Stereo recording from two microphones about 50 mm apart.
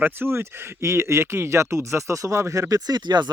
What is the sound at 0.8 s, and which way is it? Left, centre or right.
Speech, right.